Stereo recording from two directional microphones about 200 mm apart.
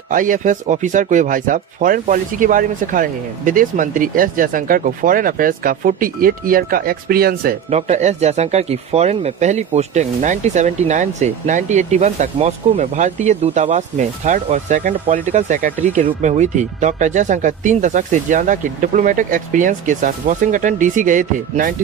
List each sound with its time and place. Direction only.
0.1 s speech: 40° right (ahead or behind)
7.7 s speech: 35° right (ahead or behind)